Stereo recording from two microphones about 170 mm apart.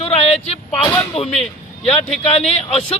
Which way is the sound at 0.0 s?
40° left (ahead or behind).